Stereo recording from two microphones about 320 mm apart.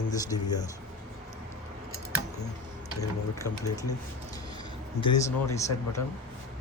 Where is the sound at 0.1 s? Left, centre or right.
Centre.